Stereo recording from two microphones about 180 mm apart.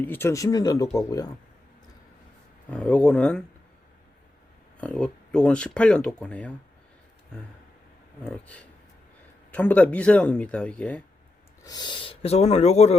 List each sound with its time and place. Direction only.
0.0 s speech: 10° left (ahead or behind)
2.6 s speech: 5° left (ahead or behind)
4.8 s speech: 5° left (ahead or behind)
8.2 s speech: 5° left (ahead or behind)
11.6 s speech: 25° left (ahead or behind)